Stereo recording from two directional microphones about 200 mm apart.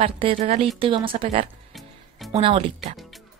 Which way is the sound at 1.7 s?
Centre (ahead or behind).